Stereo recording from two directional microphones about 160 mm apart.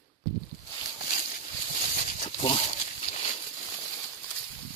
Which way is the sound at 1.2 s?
55° left (ahead or behind).